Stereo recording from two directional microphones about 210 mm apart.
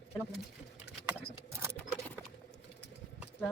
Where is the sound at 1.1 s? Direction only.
10° right (ahead or behind).